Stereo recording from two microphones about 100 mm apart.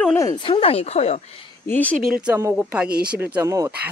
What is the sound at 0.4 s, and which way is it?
Speech, 70° left (ahead or behind).